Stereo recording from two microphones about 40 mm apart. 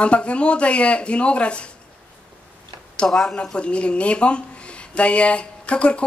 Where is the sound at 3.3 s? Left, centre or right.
Left.